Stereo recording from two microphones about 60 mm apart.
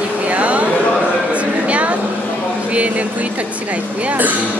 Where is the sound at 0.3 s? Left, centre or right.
Right.